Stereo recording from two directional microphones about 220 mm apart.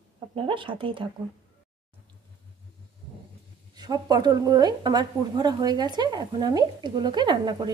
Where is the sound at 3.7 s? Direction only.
20° right (ahead or behind).